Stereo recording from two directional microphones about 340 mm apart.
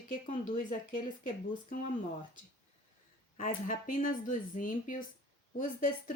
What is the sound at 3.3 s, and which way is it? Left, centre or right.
Speech, left.